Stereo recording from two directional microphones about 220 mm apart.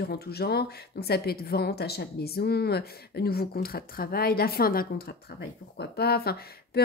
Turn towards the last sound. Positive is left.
turn(degrees=45)  # may be behind; listen again after turning